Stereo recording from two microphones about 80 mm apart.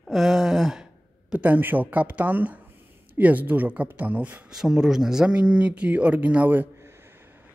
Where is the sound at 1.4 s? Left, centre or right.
Right.